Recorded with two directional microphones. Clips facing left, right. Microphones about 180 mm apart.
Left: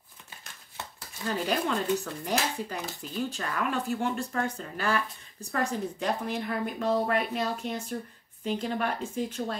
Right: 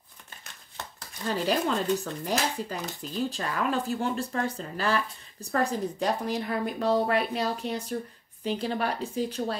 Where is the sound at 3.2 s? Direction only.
35° right (ahead or behind).